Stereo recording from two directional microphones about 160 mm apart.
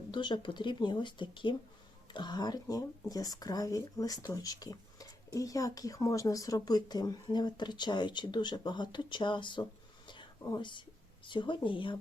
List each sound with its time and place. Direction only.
0.1 s speech: 30° left (ahead or behind)
10.1 s whispering: 25° left (ahead or behind)
11.3 s a woman's voice: 30° left (ahead or behind)